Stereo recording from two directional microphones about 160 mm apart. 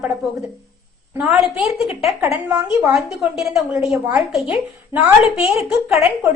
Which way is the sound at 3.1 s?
Centre (ahead or behind).